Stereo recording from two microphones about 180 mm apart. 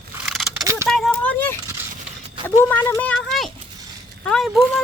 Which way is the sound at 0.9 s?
Centre (ahead or behind).